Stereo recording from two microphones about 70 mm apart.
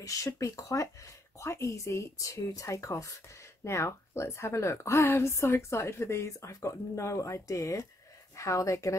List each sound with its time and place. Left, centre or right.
0.0 s speech: left